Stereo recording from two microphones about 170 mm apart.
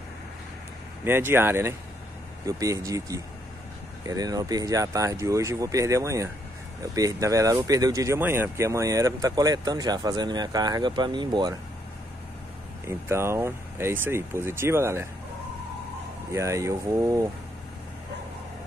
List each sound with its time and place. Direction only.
1.0 s speech: 15° right (ahead or behind)
12.8 s speech: 15° right (ahead or behind)
16.3 s speech: 15° right (ahead or behind)